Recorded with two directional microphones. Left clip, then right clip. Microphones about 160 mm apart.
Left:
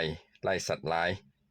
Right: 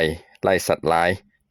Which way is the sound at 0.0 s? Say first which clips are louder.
Right 12 dB; 50° right (ahead or behind).